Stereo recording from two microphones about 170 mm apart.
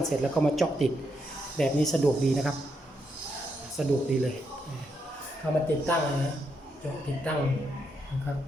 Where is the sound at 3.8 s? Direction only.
5° right (ahead or behind).